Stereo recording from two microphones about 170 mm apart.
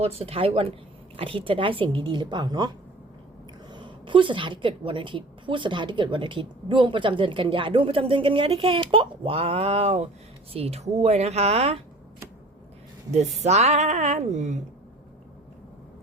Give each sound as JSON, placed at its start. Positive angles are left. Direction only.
{"t": 0.0, "sound": "a woman's voice", "side_deg": -35}
{"t": 3.7, "sound": "a woman's voice", "side_deg": -30}
{"t": 13.4, "sound": "a woman's voice", "side_deg": -40}